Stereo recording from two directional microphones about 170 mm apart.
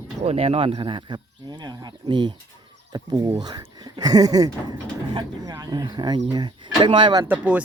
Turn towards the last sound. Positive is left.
turn(degrees=-10)  # may be behind; listen again after turning